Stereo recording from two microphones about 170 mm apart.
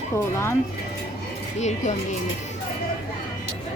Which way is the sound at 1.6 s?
45° left (ahead or behind).